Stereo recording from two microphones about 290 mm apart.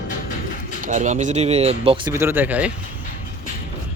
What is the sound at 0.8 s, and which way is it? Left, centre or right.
Speech, right.